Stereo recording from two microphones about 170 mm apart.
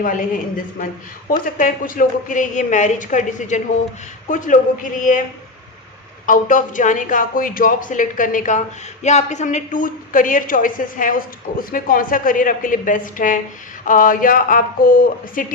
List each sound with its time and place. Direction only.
0.0 s speech: 50° left (ahead or behind)
6.2 s speech: 50° left (ahead or behind)